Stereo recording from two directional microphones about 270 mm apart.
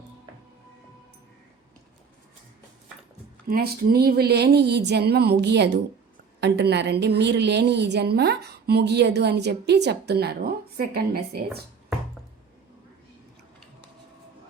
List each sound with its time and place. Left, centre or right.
3.4 s a woman's voice: right